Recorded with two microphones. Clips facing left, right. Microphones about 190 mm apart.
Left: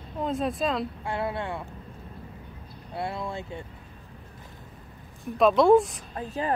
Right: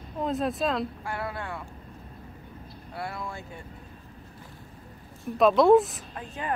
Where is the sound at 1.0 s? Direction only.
25° left (ahead or behind).